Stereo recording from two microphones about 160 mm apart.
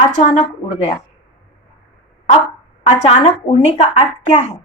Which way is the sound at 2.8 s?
45° left (ahead or behind).